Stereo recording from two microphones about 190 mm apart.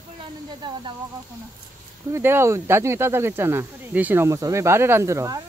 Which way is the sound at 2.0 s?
15° right (ahead or behind).